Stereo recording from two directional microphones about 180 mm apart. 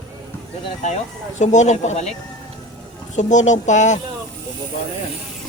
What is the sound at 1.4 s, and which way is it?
Speech, 40° left (ahead or behind).